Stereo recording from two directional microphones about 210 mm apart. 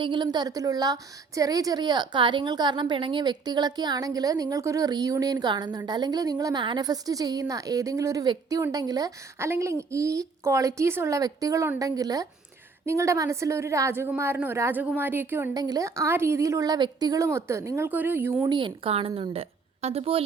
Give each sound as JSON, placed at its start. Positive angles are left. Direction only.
{"t": 0.0, "sound": "a woman's voice", "side_deg": -20}
{"t": 18.4, "sound": "a woman's voice", "side_deg": -20}